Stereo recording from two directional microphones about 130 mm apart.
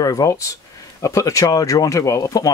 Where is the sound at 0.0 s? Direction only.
25° left (ahead or behind).